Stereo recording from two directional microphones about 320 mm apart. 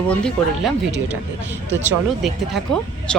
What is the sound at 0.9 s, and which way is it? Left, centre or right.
Speech, right.